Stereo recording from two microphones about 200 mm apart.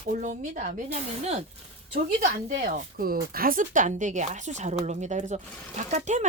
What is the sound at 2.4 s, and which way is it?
Speech, 45° right (ahead or behind).